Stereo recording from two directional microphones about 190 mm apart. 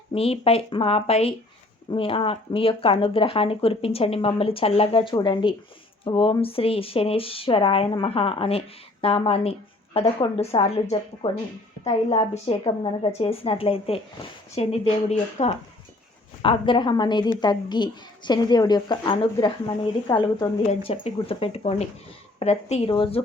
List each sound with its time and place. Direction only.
0.1 s a woman's voice: 30° left (ahead or behind)